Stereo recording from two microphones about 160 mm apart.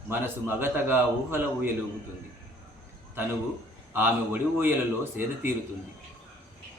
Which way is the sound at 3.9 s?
15° right (ahead or behind).